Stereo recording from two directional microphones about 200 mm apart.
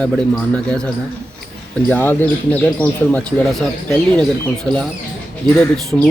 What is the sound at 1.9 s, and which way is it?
Speech, 10° left (ahead or behind).